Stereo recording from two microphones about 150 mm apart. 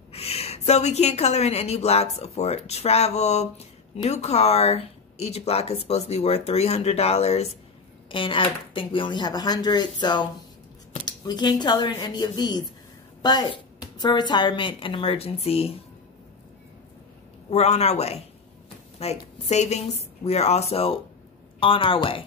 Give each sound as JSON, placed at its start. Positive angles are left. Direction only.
{"t": 0.1, "sound": "a woman's voice", "side_deg": 40}
{"t": 17.5, "sound": "a woman's voice", "side_deg": 45}